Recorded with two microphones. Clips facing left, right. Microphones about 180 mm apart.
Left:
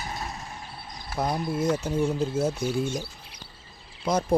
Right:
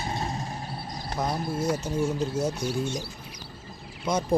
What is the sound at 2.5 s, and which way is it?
Speech, 50° left (ahead or behind).